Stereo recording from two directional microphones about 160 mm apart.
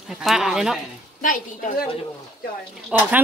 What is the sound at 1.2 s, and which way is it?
Speech, 55° left (ahead or behind).